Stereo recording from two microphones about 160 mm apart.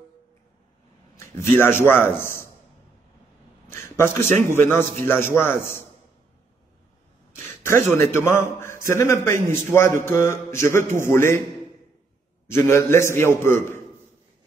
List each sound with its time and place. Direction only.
1.1 s a man's voice: 15° left (ahead or behind)
3.7 s a man's voice: 15° left (ahead or behind)
7.3 s a man's voice: 15° left (ahead or behind)
12.4 s a man's voice: 15° left (ahead or behind)